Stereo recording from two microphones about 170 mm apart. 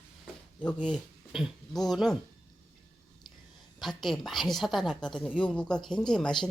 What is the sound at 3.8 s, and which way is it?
Speech, centre (ahead or behind).